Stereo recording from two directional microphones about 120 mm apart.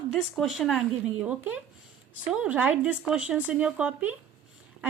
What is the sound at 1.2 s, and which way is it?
Speech, 10° right (ahead or behind).